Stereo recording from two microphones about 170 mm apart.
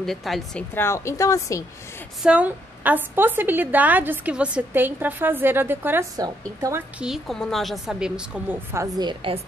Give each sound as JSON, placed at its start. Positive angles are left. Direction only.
{"t": 0.0, "sound": "a woman's voice", "side_deg": 0}
{"t": 0.7, "sound": "a woman's voice", "side_deg": 15}
{"t": 2.2, "sound": "a woman's voice", "side_deg": -10}
{"t": 7.0, "sound": "a woman's voice", "side_deg": 0}
{"t": 8.7, "sound": "a woman's voice", "side_deg": -20}